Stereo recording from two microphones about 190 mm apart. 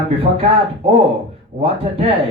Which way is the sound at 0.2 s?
30° right (ahead or behind).